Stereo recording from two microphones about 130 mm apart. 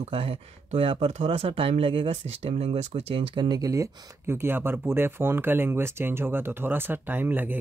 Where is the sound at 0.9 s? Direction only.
60° right (ahead or behind).